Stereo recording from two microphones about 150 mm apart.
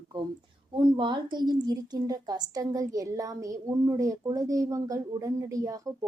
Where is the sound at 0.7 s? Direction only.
30° right (ahead or behind).